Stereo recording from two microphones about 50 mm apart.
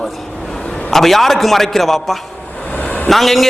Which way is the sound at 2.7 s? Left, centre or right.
Left.